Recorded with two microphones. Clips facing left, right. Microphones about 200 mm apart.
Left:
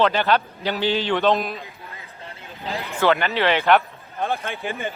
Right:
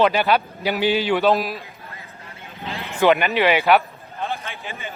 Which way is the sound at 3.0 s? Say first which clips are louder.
Right 3 dB; 15° right (ahead or behind).